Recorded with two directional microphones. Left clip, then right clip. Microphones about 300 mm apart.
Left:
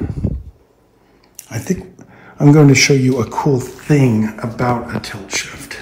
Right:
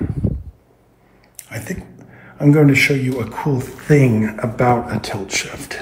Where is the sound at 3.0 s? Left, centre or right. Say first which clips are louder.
Left 6 dB; centre.